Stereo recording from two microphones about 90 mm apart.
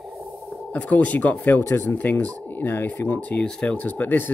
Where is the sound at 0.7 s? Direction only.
15° left (ahead or behind).